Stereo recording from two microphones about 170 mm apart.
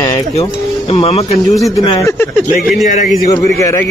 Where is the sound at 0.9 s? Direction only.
35° left (ahead or behind).